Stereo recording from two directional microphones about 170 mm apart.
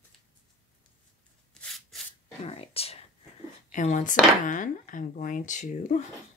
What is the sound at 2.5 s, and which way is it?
Whispering, 35° left (ahead or behind).